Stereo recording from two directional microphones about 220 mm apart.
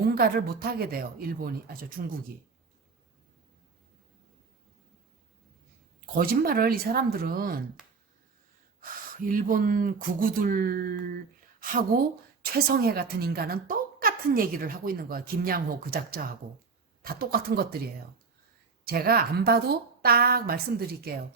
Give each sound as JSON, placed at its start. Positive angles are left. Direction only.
{"t": 0.0, "sound": "a woman's voice", "side_deg": -45}
{"t": 6.1, "sound": "a woman's voice", "side_deg": -40}
{"t": 9.3, "sound": "a woman's voice", "side_deg": -40}
{"t": 18.9, "sound": "a woman's voice", "side_deg": -45}